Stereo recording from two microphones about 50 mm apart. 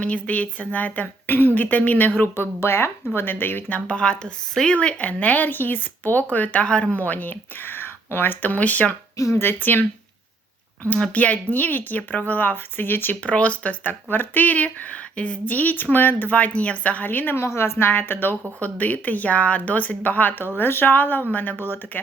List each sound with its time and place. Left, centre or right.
0.0 s a woman's voice: left
3.8 s speech: left
6.9 s a woman's voice: left
9.1 s speech: left
9.4 s a woman's voice: left
10.9 s a woman's voice: left
13.2 s speech: left
14.1 s a woman's voice: left
17.3 s a woman's voice: left
18.6 s a woman's voice: left